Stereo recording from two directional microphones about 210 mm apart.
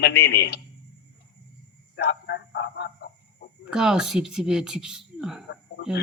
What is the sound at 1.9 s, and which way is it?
A man's voice, 55° left (ahead or behind).